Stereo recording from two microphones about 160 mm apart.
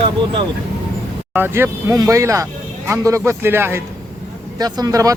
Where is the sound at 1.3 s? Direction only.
15° right (ahead or behind).